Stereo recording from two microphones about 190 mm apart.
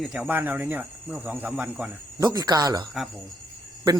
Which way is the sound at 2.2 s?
20° right (ahead or behind).